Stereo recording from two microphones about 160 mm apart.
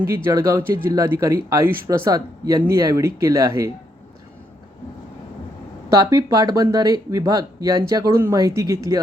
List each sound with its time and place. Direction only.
0.3 s speech: 20° right (ahead or behind)
5.9 s speech: 20° right (ahead or behind)